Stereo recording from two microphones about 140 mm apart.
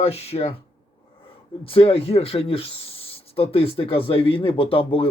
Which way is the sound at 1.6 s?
40° left (ahead or behind).